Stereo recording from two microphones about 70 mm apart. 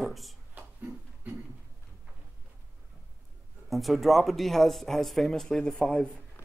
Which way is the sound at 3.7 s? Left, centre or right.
Centre.